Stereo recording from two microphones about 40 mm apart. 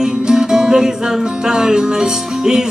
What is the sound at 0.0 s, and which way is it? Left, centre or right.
Music, centre.